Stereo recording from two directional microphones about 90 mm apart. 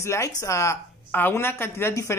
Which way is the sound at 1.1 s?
20° left (ahead or behind).